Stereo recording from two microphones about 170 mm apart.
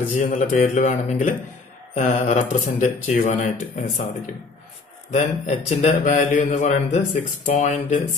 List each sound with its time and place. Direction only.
0.1 s speech: 50° left (ahead or behind)
5.1 s speech: 45° left (ahead or behind)